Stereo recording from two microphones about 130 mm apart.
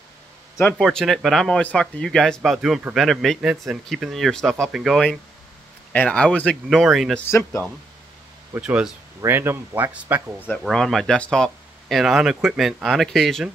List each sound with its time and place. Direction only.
0.7 s speech: centre (ahead or behind)
7.2 s speech: 20° left (ahead or behind)
8.5 s speech: 10° right (ahead or behind)
9.2 s speech: 20° right (ahead or behind)
10.6 s speech: centre (ahead or behind)